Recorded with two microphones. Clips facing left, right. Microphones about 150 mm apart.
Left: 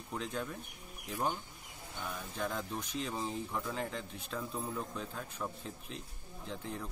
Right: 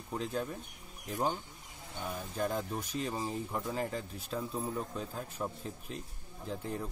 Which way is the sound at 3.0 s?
5° right (ahead or behind).